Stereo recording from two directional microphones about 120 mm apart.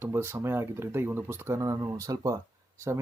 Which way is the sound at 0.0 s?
20° right (ahead or behind).